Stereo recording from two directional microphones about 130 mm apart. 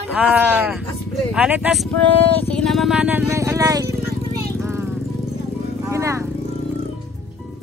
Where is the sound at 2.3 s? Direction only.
10° left (ahead or behind).